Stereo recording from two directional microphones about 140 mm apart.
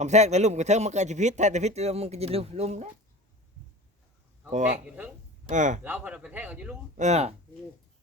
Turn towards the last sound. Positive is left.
turn(degrees=-50)  # may be behind; listen again after turning